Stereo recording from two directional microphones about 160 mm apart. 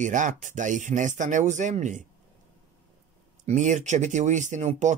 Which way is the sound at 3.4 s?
50° right (ahead or behind).